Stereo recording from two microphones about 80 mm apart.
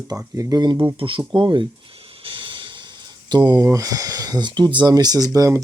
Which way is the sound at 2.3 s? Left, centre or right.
Right.